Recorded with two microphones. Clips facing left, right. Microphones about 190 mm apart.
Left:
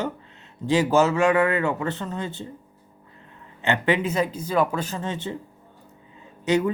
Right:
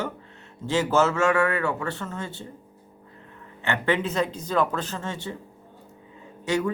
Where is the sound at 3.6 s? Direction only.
20° left (ahead or behind).